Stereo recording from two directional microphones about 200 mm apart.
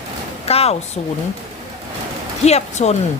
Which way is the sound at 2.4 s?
35° left (ahead or behind).